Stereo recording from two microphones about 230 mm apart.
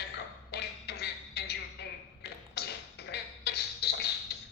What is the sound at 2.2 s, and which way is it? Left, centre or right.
Beatboxing, left.